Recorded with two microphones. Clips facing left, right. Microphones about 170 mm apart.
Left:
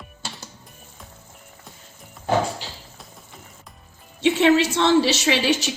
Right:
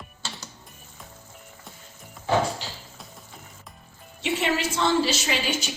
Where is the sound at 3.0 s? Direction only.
Centre (ahead or behind).